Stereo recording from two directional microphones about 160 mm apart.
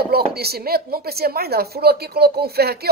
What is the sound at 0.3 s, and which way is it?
Speech, 80° right.